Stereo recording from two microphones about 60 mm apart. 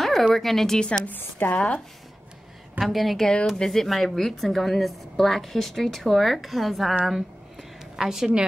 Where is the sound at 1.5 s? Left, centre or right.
Centre.